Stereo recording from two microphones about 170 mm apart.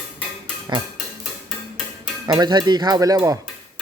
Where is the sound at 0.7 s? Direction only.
25° right (ahead or behind).